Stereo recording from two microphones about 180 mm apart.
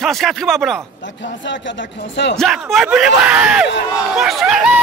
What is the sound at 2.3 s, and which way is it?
Speech, centre (ahead or behind).